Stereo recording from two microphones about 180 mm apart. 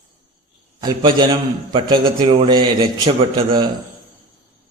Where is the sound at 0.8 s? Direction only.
25° right (ahead or behind).